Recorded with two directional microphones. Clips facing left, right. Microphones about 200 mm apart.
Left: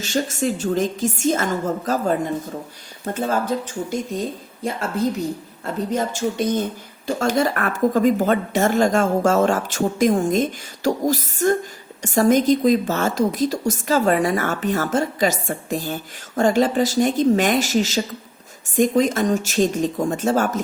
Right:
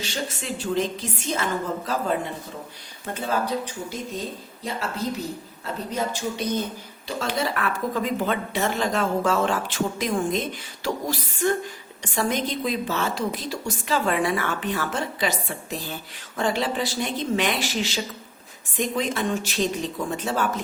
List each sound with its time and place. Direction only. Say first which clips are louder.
0.0 s a woman's voice: left 9 dB; 45° left (ahead or behind)
5.6 s a woman's voice: left 5 dB; 50° left (ahead or behind)